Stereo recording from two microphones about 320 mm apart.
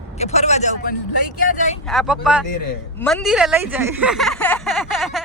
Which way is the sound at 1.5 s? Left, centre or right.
Left.